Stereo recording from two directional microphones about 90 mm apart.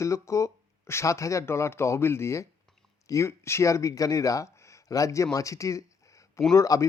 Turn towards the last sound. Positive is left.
turn(degrees=40)  # may be behind; listen again after turning